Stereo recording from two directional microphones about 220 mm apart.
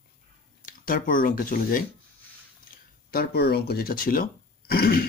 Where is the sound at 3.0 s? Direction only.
45° left (ahead or behind).